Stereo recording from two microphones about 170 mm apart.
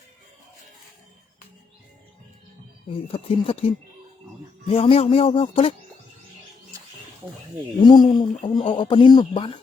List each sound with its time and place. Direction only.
2.9 s speech: 35° left (ahead or behind)
7.8 s speech: 25° left (ahead or behind)